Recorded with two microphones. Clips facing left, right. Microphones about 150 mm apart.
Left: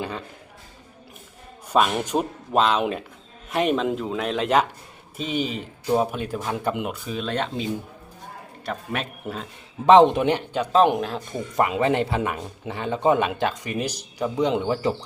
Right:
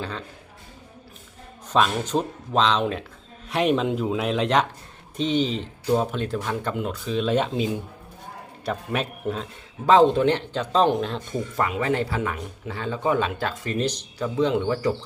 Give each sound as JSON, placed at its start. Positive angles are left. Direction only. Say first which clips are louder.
{"t": 1.7, "sound": "a man's voice", "louder": "left 1 dB", "side_deg": 10}
{"t": 7.2, "sound": "speech", "louder": "right 5 dB", "side_deg": -5}
{"t": 8.6, "sound": "speech", "louder": "right 3 dB", "side_deg": 0}
{"t": 9.8, "sound": "a man's voice", "louder": "left 2 dB", "side_deg": 20}
{"t": 11.5, "sound": "a man's voice", "louder": "left 4 dB", "side_deg": 20}